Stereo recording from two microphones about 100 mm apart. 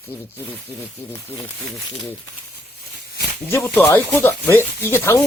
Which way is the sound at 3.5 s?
25° left (ahead or behind).